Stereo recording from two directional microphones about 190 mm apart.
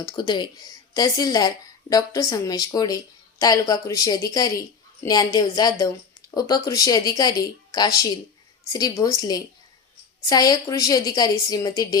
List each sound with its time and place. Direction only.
0.0 s speech: 25° left (ahead or behind)